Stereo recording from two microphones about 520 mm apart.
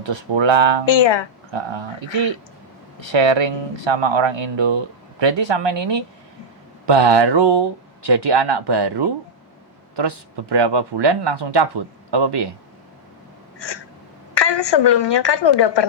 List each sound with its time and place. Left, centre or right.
0.0 s speech: right
0.9 s speech: left
1.5 s speech: right
14.3 s a woman's voice: left